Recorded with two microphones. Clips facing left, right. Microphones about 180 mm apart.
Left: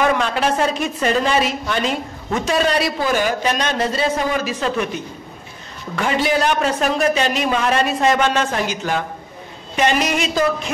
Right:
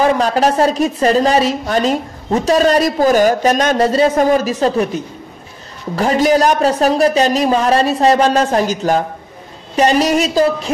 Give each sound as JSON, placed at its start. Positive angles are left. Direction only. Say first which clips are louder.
{"t": 0.0, "sound": "a woman's voice", "louder": "right 5 dB", "side_deg": -35}